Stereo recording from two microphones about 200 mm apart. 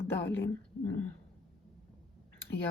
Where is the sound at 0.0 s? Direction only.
10° left (ahead or behind).